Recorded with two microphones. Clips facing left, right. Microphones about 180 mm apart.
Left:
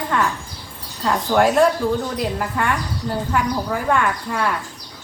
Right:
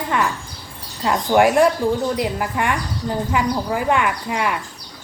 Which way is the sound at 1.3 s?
15° right (ahead or behind).